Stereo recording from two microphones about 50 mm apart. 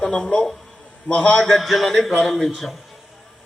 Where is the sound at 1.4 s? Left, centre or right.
Centre.